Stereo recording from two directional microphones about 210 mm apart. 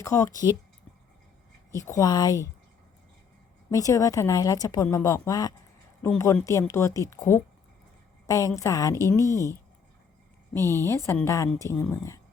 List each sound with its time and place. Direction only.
0.0 s speech: 15° left (ahead or behind)
1.7 s speech: 15° left (ahead or behind)
3.7 s speech: 15° left (ahead or behind)